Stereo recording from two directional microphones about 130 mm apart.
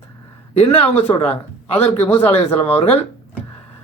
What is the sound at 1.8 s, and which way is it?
Speech, 50° left (ahead or behind).